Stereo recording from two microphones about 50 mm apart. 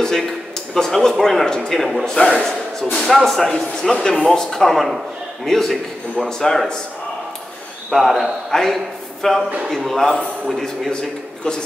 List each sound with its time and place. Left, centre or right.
0.7 s speech: centre
1.7 s a man's voice: centre
2.0 s speech: centre
3.1 s speech: centre
7.9 s a man's voice: centre